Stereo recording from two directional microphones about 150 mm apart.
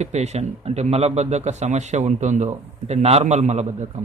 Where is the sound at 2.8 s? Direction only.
45° right (ahead or behind).